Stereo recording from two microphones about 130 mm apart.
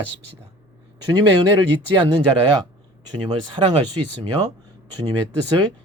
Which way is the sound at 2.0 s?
35° right (ahead or behind).